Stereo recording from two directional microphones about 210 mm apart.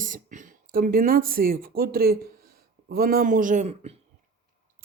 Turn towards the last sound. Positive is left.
turn(degrees=-30)  # may be behind; listen again after turning